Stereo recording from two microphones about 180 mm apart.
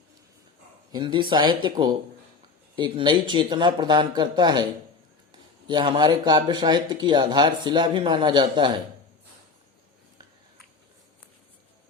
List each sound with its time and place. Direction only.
0.9 s speech: 25° right (ahead or behind)